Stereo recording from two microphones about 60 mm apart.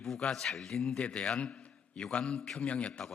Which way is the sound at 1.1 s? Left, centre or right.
Centre.